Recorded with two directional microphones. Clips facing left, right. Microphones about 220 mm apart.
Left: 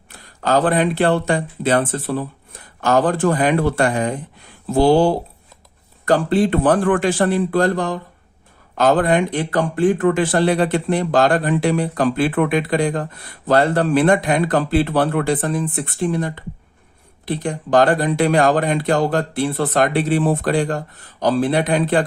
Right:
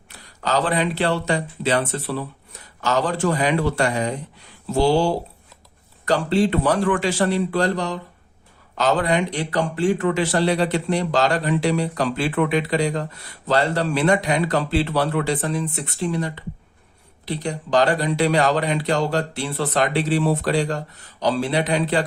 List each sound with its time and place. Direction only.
0.1 s speech: 50° left (ahead or behind)